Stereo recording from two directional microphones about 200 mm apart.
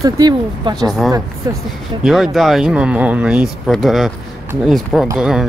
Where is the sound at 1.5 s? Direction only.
20° right (ahead or behind).